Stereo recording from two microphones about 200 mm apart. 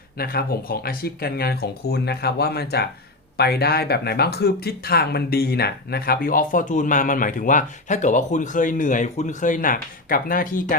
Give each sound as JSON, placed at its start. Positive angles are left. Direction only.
{"t": 0.2, "sound": "speech", "side_deg": 50}